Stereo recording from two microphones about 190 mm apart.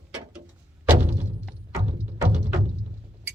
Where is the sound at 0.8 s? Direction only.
10° right (ahead or behind).